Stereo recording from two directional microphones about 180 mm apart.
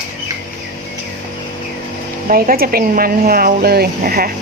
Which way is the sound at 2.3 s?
55° right (ahead or behind).